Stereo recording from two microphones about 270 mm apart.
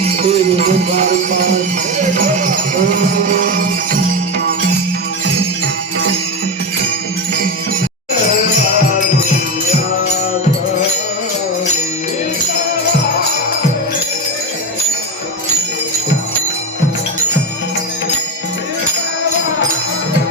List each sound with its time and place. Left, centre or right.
0.2 s music: right